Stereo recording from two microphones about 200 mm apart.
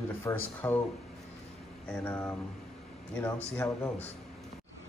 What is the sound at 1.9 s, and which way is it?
Speech, 10° left (ahead or behind).